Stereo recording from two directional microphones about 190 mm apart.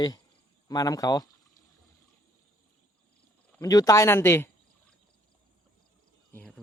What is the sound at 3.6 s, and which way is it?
Speech, 20° left (ahead or behind).